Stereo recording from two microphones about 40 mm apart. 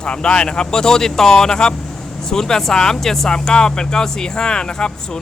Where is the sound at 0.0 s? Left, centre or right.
Left.